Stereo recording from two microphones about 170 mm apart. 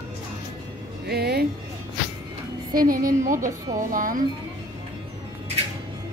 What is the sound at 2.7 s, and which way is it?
A woman's voice, 55° right (ahead or behind).